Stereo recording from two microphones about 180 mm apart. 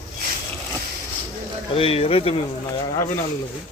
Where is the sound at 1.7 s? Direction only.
30° left (ahead or behind).